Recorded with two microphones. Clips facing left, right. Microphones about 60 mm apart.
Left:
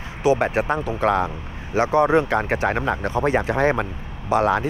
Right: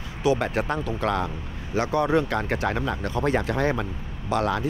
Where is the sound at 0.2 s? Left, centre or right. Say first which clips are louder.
Left 4 dB; left.